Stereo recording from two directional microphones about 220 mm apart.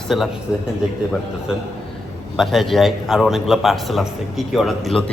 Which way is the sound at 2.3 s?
Centre (ahead or behind).